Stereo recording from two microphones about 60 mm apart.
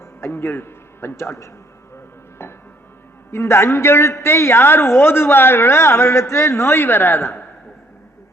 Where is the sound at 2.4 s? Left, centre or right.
Left.